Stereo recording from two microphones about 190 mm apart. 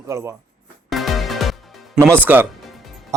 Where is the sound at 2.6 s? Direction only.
Centre (ahead or behind).